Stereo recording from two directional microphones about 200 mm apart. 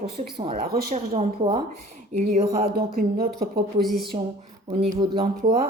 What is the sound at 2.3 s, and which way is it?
Speech, 45° right (ahead or behind).